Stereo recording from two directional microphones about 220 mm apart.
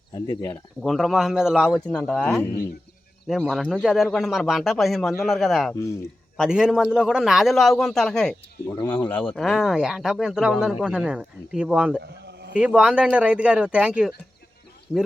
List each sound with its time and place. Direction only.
0.1 s speech: 15° left (ahead or behind)
0.8 s speech: centre (ahead or behind)
12.0 s a sound: 50° right (ahead or behind)
12.5 s speech: 5° right (ahead or behind)